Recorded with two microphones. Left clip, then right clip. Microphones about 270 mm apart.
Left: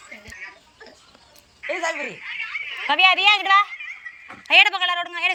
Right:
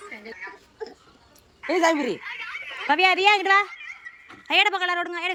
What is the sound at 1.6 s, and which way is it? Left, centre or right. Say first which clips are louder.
Speech: right 4 dB; right.